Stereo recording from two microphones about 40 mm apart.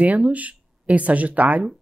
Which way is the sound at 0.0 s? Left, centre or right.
Right.